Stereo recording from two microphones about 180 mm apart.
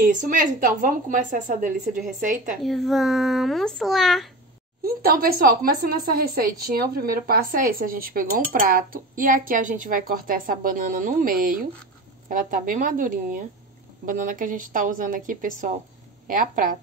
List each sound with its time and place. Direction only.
0.0 s speech: 45° right (ahead or behind)
2.6 s a child's voice: centre (ahead or behind)
4.8 s speech: 55° right (ahead or behind)